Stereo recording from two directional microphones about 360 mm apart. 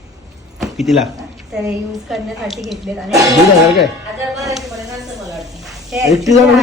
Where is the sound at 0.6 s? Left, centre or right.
Centre.